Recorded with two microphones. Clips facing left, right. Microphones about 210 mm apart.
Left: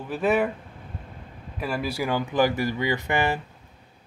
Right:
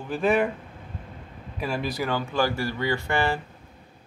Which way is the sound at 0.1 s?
5° left (ahead or behind).